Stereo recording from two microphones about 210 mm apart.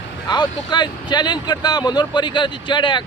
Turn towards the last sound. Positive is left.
turn(degrees=20)  # may be behind; listen again after turning